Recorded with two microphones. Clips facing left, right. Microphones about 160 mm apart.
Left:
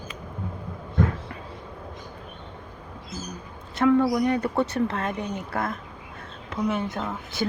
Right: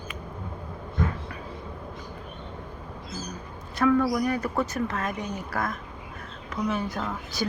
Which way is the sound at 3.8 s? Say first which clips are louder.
Left 2 dB; 25° left (ahead or behind).